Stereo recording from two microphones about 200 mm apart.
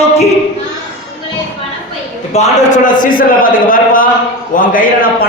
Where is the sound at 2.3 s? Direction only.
35° left (ahead or behind).